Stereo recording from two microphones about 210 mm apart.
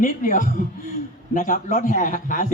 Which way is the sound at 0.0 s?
40° left (ahead or behind).